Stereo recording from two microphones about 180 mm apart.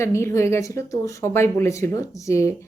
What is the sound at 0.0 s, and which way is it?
A woman's voice, 15° left (ahead or behind).